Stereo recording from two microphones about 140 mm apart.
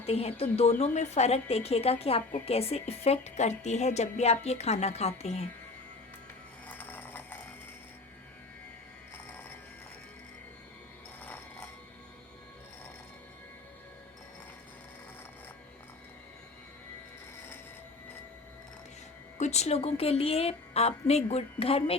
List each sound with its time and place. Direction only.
0.0 s a woman's voice: 45° left (ahead or behind)
6.7 s a sound: 10° left (ahead or behind)
11.2 s bicycle bell: 10° left (ahead or behind)
19.4 s a woman's voice: 50° left (ahead or behind)